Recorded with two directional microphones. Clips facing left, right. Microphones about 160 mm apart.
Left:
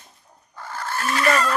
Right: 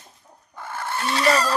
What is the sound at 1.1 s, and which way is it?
Fowl, 30° right (ahead or behind).